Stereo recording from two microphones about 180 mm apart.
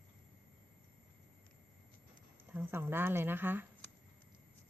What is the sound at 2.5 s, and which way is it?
Speech, 10° right (ahead or behind).